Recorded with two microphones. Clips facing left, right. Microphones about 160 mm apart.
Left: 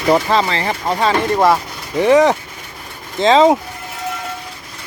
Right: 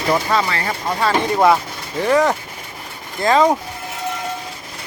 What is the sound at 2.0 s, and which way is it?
Speech, 20° left (ahead or behind).